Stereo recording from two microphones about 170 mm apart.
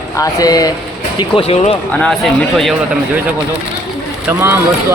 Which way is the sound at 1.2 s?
35° left (ahead or behind).